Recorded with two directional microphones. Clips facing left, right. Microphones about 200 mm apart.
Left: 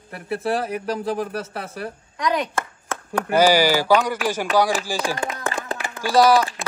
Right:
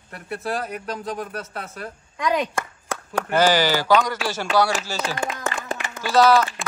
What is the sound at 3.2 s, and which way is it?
Speech, 10° left (ahead or behind).